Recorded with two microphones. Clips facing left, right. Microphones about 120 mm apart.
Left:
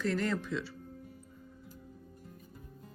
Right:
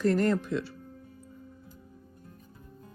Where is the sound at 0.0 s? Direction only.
50° right (ahead or behind).